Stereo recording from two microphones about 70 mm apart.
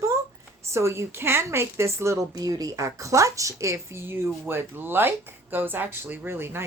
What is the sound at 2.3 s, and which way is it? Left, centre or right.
Speech, right.